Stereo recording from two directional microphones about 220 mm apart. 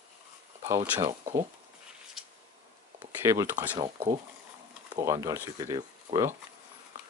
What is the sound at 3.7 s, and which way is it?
Speech, 20° right (ahead or behind).